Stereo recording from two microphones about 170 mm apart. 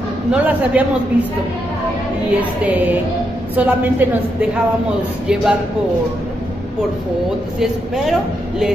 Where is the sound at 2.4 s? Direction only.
10° right (ahead or behind).